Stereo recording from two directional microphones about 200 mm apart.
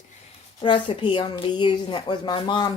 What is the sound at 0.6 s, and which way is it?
A woman's voice, 25° left (ahead or behind).